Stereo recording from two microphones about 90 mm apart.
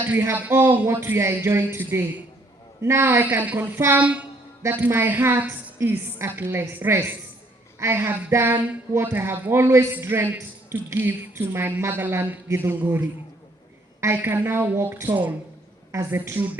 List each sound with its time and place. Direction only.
0.1 s a woman's voice: 25° right (ahead or behind)
14.2 s speech: 25° right (ahead or behind)
15.9 s speech: 35° right (ahead or behind)